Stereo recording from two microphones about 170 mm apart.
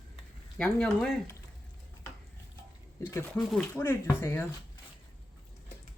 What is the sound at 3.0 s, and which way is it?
Speech, 15° left (ahead or behind).